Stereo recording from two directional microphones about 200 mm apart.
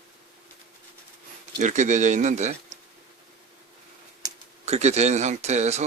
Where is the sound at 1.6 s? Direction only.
35° right (ahead or behind).